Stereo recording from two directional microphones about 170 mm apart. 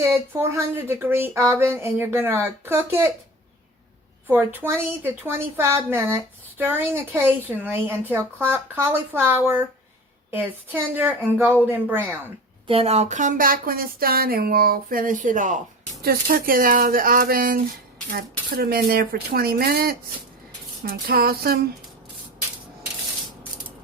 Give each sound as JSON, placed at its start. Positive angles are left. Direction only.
{"t": 0.0, "sound": "speech", "side_deg": -15}
{"t": 4.3, "sound": "speech", "side_deg": -10}
{"t": 12.6, "sound": "speech", "side_deg": -35}